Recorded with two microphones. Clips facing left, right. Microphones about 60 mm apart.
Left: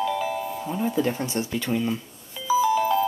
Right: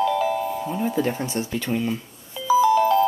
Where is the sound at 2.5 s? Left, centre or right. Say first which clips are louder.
Right 4 dB; centre.